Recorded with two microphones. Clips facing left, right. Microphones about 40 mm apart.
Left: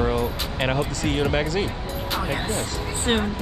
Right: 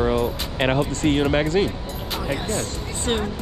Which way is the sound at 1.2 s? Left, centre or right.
Right.